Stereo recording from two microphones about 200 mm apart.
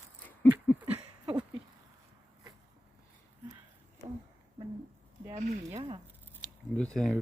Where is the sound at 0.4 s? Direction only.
10° left (ahead or behind).